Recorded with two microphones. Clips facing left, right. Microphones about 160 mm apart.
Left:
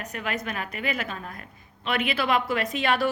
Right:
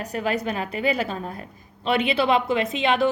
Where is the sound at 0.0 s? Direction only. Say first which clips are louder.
Right 6 dB; 35° right (ahead or behind).